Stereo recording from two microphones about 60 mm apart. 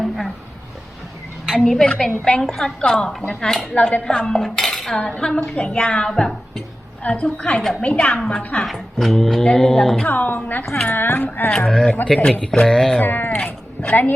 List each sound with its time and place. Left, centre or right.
1.5 s a woman's voice: centre
4.0 s cutlery: centre
4.9 s a woman's voice: centre
8.5 s a woman's voice: centre
10.1 s a woman's voice: left
11.5 s a woman's voice: centre
13.0 s speech: left
13.3 s speech: centre